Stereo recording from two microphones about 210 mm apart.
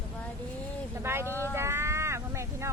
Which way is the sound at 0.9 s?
10° right (ahead or behind).